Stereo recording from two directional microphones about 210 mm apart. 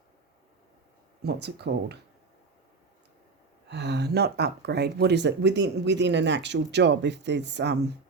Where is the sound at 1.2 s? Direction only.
50° right (ahead or behind).